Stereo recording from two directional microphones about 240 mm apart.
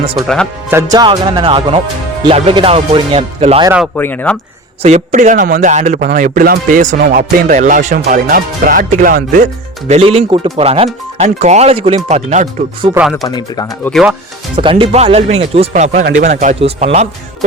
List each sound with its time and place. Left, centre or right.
0.7 s speech: centre
3.9 s speech: centre
4.8 s music: right
9.9 s speech: right
12.9 s speech: centre
13.2 s speech: centre
13.7 s speech: centre
14.5 s speech: right